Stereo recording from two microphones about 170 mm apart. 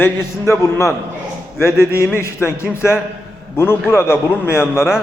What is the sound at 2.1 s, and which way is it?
A man's voice, 15° left (ahead or behind).